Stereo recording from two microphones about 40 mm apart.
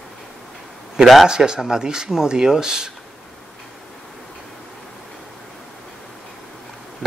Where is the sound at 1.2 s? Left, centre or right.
Centre.